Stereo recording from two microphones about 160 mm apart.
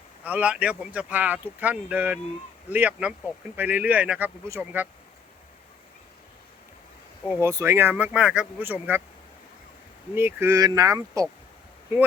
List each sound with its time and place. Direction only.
0.3 s speech: 10° right (ahead or behind)
7.3 s speech: 15° right (ahead or behind)
10.2 s speech: 15° right (ahead or behind)